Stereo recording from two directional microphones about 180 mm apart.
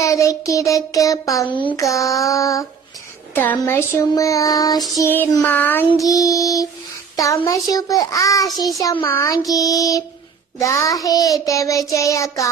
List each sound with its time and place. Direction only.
0.0 s child singing: 15° left (ahead or behind)